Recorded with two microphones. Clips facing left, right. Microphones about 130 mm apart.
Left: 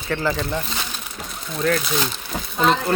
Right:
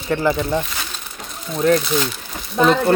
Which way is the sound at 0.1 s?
15° right (ahead or behind).